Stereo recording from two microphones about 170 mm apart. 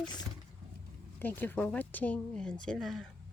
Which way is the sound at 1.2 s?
10° left (ahead or behind).